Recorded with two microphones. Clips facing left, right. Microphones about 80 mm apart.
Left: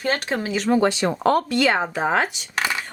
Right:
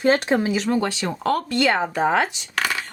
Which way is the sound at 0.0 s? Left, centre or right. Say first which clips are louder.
Right 5 dB; centre.